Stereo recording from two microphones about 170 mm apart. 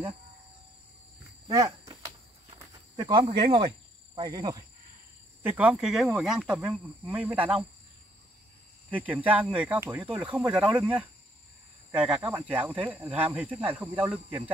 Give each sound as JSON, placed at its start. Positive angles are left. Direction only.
{"t": 1.5, "sound": "a sound", "side_deg": -20}
{"t": 3.0, "sound": "cricket", "side_deg": -25}
{"t": 4.1, "sound": "speech", "side_deg": -25}
{"t": 5.4, "sound": "speech", "side_deg": -10}
{"t": 8.9, "sound": "speech", "side_deg": -10}